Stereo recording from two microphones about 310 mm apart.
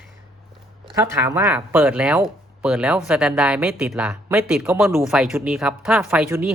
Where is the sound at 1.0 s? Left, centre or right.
Centre.